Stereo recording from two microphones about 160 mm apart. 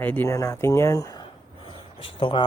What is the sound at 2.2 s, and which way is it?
Speech, 35° left (ahead or behind).